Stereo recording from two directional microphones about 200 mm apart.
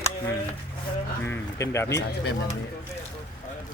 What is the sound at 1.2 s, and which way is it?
Speech, 10° left (ahead or behind).